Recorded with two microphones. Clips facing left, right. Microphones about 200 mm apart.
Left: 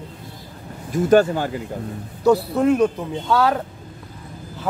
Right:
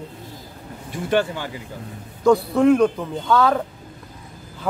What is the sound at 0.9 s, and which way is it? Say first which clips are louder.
Speech: left 6 dB; 45° left (ahead or behind).